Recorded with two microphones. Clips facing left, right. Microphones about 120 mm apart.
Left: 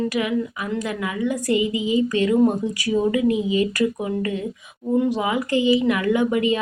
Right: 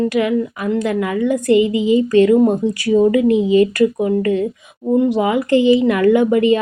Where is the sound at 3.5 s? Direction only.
45° right (ahead or behind).